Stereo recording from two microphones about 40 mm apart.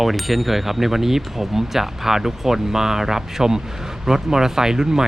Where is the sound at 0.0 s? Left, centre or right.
Centre.